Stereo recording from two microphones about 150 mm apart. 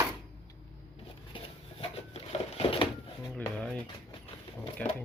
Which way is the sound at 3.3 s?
10° left (ahead or behind).